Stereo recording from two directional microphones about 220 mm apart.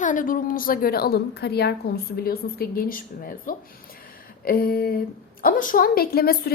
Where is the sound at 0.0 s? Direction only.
35° left (ahead or behind).